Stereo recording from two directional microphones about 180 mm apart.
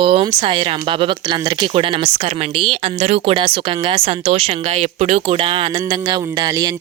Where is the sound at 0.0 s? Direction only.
30° right (ahead or behind).